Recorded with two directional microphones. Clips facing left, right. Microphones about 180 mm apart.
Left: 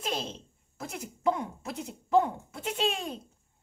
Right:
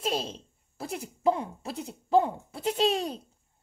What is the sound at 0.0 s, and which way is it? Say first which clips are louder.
Speech: right 3 dB; 35° right (ahead or behind).